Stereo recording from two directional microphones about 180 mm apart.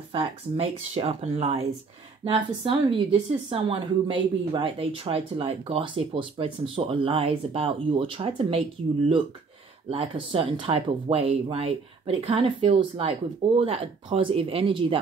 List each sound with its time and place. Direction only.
0.1 s a woman's voice: 35° right (ahead or behind)
9.8 s a woman's voice: 30° right (ahead or behind)